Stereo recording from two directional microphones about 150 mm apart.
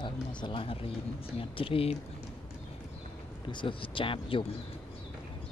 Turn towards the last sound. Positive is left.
turn(degrees=35)  # may be behind; listen again after turning